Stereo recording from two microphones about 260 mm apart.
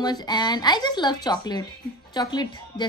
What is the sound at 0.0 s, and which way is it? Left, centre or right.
A woman's voice, centre.